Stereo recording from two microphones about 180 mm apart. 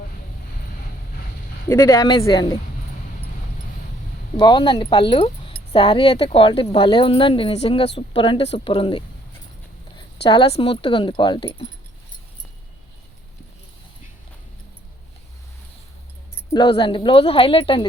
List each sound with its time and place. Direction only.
1.7 s speech: 15° left (ahead or behind)
4.4 s speech: 25° left (ahead or behind)
10.2 s speech: 30° left (ahead or behind)
16.5 s speech: 25° left (ahead or behind)